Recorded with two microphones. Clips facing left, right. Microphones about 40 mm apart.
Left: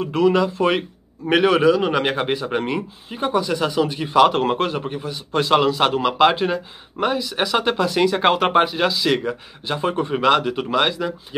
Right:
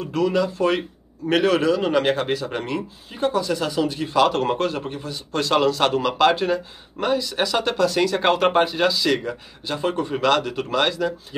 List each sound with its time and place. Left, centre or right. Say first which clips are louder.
0.0 s a man's voice: left 4 dB; left